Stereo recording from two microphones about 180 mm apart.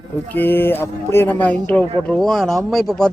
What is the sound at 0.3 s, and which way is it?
A man's voice, 10° left (ahead or behind).